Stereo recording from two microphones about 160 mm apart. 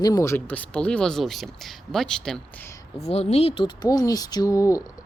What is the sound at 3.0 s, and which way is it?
Speech, 40° left (ahead or behind).